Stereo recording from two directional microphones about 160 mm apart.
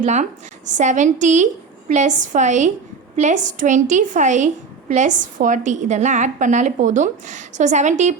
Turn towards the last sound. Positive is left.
turn(degrees=-50)  # may be behind; listen again after turning